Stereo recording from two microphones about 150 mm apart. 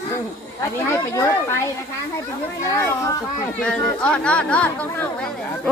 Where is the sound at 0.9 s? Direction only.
20° left (ahead or behind).